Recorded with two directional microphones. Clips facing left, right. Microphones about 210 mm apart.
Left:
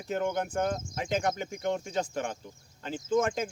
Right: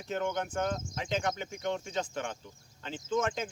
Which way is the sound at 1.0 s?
45° left (ahead or behind).